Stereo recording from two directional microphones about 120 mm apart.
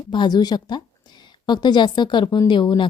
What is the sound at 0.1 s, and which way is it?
Speech, 40° left (ahead or behind).